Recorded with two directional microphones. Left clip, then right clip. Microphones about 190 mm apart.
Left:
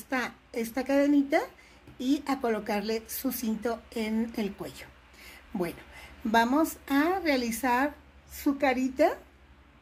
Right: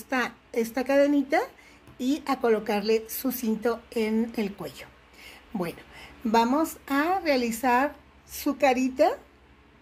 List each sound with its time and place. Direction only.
0.1 s speech: 15° right (ahead or behind)